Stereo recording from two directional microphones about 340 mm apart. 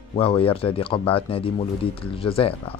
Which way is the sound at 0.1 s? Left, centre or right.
Centre.